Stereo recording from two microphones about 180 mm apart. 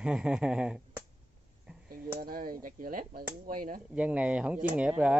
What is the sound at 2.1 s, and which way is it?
Speech, 55° right (ahead or behind).